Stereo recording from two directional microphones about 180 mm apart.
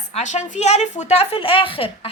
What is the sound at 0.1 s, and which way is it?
A woman's voice, 40° left (ahead or behind).